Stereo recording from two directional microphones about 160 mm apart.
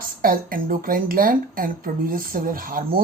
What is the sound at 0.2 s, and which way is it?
Speech, 65° right (ahead or behind).